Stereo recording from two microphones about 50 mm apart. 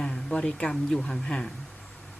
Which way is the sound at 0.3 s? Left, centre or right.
Centre.